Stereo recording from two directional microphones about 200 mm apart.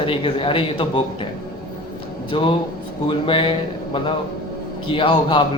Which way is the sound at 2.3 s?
25° left (ahead or behind).